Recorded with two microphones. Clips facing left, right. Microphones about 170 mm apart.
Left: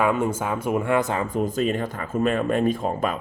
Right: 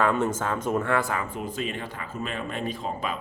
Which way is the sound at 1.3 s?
40° left (ahead or behind).